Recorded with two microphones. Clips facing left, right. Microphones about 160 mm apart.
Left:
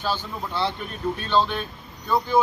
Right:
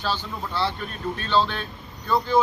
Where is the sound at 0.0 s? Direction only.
15° left (ahead or behind).